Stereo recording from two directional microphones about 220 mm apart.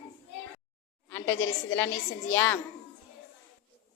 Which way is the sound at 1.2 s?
60° left (ahead or behind).